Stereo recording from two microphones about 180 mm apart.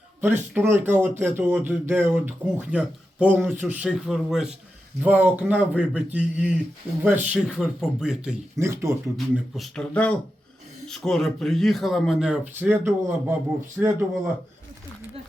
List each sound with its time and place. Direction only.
0.2 s speech: 10° right (ahead or behind)
8.5 s speech: 15° right (ahead or behind)
9.1 s speech: centre (ahead or behind)
13.8 s speech: centre (ahead or behind)